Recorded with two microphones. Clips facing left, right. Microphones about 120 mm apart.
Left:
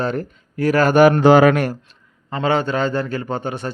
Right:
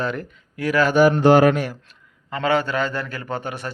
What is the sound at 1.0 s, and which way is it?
Speech, 70° left (ahead or behind).